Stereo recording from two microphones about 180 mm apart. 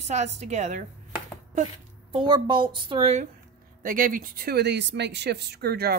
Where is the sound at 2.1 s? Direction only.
25° right (ahead or behind).